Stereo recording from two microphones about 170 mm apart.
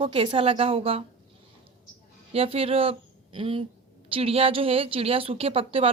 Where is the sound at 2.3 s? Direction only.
35° right (ahead or behind).